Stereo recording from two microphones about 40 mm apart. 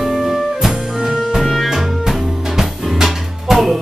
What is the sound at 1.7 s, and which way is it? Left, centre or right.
Music, centre.